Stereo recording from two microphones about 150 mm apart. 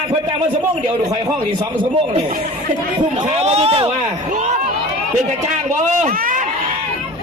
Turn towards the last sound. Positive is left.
turn(degrees=-65)  # may be behind; listen again after turning